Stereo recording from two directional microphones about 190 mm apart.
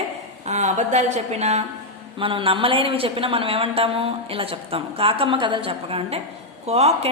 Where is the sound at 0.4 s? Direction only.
40° right (ahead or behind).